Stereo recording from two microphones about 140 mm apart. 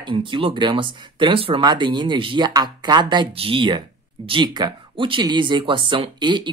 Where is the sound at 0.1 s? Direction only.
40° right (ahead or behind).